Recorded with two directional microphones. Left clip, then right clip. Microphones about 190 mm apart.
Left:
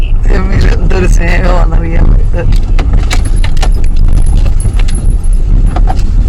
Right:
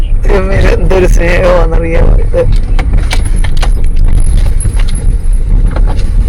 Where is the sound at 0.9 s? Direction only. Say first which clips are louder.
Right 4 dB; 15° right (ahead or behind).